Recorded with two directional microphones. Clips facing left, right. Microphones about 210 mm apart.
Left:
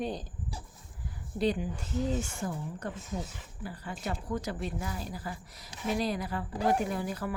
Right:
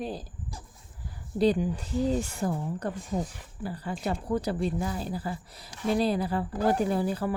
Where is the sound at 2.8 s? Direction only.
35° right (ahead or behind).